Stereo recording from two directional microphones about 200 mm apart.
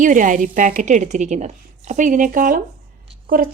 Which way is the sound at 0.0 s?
40° right (ahead or behind).